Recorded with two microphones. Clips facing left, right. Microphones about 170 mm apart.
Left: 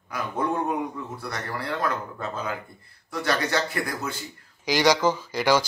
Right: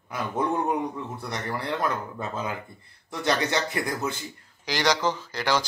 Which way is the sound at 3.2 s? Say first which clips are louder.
Even; 20° right (ahead or behind).